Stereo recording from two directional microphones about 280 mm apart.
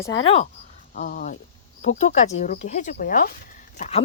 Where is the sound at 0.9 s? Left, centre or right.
Left.